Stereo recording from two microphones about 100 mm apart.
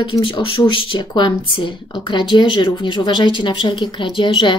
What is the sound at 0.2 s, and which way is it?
Speech, 60° left (ahead or behind).